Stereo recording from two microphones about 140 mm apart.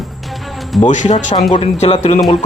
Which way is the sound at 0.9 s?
60° left (ahead or behind).